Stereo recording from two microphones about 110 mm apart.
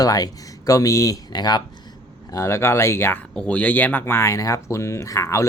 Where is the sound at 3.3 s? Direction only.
10° left (ahead or behind).